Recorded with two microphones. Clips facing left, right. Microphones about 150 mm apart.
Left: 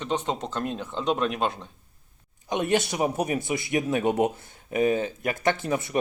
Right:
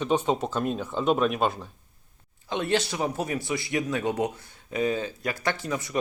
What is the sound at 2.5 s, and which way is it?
Speech, 15° left (ahead or behind).